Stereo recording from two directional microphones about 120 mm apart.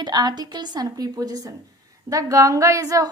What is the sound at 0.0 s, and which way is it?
A woman's voice, 35° right (ahead or behind).